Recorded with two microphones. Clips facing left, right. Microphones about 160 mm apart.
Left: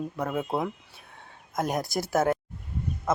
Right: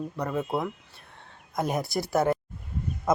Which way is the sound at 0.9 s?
Centre (ahead or behind).